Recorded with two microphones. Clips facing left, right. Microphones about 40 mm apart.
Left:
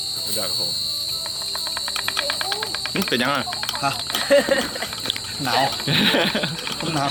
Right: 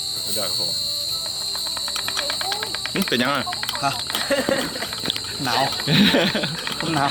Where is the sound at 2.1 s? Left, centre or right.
Left.